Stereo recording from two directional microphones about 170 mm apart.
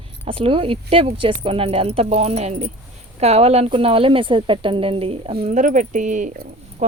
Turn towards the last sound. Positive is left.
turn(degrees=-50)  # may be behind; listen again after turning